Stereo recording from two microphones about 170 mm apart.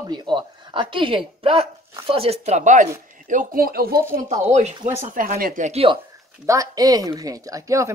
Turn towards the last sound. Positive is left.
turn(degrees=-20)  # may be behind; listen again after turning